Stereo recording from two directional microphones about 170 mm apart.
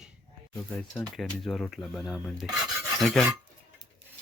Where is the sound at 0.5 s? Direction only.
5° left (ahead or behind).